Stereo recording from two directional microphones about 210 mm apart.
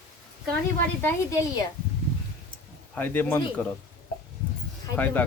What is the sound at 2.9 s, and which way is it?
Speech, 10° left (ahead or behind).